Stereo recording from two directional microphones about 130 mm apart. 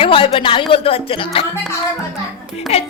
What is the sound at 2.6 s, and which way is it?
Speech, 50° left (ahead or behind).